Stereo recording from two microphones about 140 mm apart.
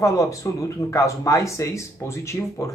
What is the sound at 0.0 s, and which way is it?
Speech, 20° left (ahead or behind).